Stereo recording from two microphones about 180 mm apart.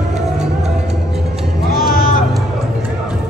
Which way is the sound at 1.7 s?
55° left (ahead or behind).